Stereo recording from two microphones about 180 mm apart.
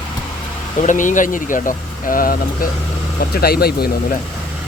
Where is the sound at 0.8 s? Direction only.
45° left (ahead or behind).